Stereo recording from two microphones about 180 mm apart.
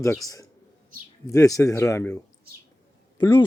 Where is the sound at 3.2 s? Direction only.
25° left (ahead or behind).